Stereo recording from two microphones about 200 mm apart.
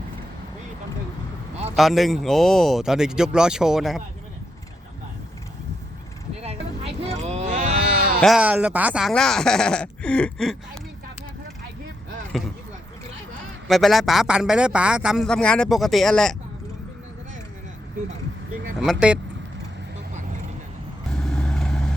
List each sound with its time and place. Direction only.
1.7 s a man's voice: centre (ahead or behind)
6.4 s sheep: 30° right (ahead or behind); by 8.2 s 45° right (ahead or behind)
8.2 s a man's voice: 5° right (ahead or behind)
12.3 s a man's voice: centre (ahead or behind)
13.7 s a man's voice: centre (ahead or behind)
18.8 s a man's voice: 5° right (ahead or behind)
21.1 s vehicle: 5° left (ahead or behind)